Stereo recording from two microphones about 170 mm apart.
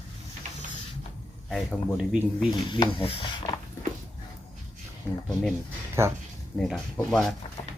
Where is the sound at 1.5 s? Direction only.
Centre (ahead or behind).